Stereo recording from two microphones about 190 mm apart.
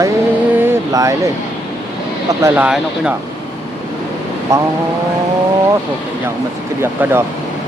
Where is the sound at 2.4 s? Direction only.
5° right (ahead or behind).